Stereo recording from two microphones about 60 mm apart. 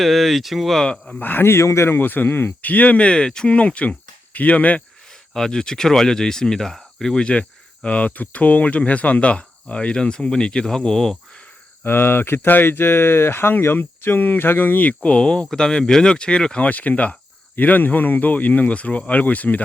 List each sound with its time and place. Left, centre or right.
0.0 s speech: centre
1.2 s speech: left
1.5 s speech: left
5.3 s speech: centre
11.8 s speech: left; by 16.6 s centre
16.6 s speech: left